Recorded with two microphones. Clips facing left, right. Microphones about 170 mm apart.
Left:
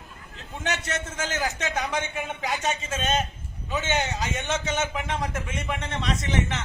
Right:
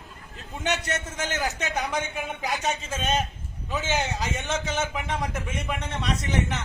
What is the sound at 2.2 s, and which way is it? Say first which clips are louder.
A man's voice: even; centre (ahead or behind).